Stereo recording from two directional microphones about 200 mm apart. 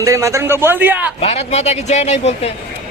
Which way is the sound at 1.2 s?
30° left (ahead or behind).